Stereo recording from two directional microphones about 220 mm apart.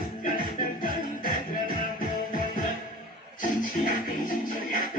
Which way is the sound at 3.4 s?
40° left (ahead or behind).